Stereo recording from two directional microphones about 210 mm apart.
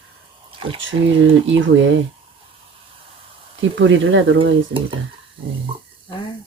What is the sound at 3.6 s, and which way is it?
Speech, 60° right (ahead or behind).